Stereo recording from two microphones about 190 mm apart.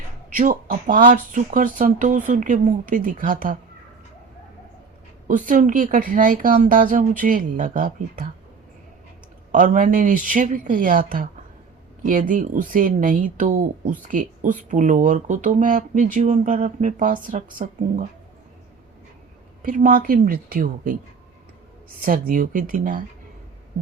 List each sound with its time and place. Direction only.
0.3 s speech: 45° right (ahead or behind)
5.3 s speech: 45° right (ahead or behind)
9.5 s speech: 45° right (ahead or behind)
19.6 s speech: 45° right (ahead or behind)
22.0 s speech: 50° right (ahead or behind)